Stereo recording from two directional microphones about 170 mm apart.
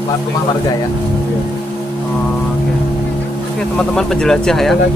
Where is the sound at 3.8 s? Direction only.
5° left (ahead or behind).